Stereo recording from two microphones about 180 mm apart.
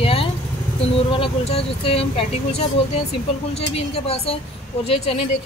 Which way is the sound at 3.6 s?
35° left (ahead or behind).